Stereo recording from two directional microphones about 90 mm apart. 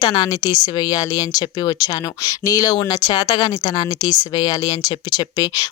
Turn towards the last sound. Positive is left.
turn(degrees=45)  # may be behind; listen again after turning